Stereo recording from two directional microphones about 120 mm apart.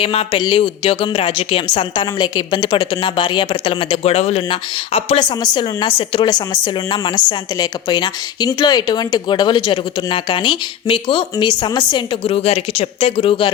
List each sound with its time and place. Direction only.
0.0 s a woman's voice: 50° left (ahead or behind)
4.0 s speech: 60° left (ahead or behind)
4.9 s speech: 50° left (ahead or behind)
13.0 s a woman's voice: 55° left (ahead or behind)